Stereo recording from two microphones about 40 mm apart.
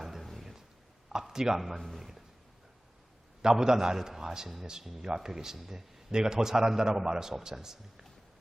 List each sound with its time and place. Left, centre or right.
0.0 s a sound: centre
1.2 s a man's voice: centre
1.6 s a man's voice: centre
3.4 s a man's voice: centre